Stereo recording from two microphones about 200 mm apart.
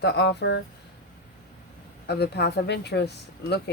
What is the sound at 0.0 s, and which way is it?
Speech, 60° left (ahead or behind).